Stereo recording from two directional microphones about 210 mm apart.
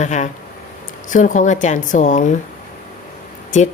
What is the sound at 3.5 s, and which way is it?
Speech, 35° left (ahead or behind).